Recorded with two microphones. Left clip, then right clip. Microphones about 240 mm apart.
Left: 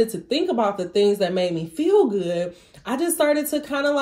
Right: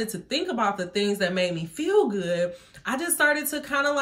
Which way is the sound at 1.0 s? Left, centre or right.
Right.